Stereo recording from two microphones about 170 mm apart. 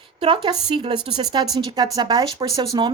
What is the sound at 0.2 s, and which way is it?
Speech, 30° right (ahead or behind).